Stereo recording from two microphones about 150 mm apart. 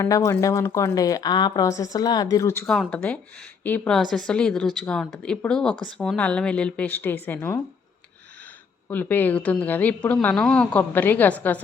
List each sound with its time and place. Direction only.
0.0 s speech: 20° left (ahead or behind)
2.6 s a woman's voice: 5° left (ahead or behind)
8.9 s a woman's voice: 10° left (ahead or behind)